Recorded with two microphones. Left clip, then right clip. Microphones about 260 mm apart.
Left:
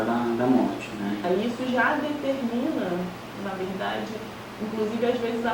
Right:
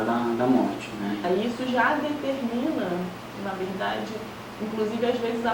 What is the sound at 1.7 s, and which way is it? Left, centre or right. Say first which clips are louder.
Speech: right 1 dB; centre.